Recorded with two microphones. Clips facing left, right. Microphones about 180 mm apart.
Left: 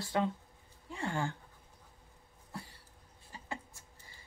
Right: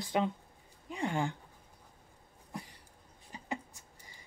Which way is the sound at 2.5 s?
15° right (ahead or behind).